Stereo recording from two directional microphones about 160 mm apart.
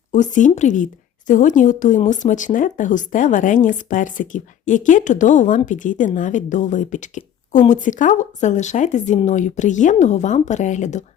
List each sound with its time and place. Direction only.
0.1 s speech: 50° left (ahead or behind)